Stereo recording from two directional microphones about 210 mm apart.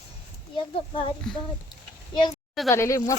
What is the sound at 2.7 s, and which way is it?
Speech, 15° left (ahead or behind).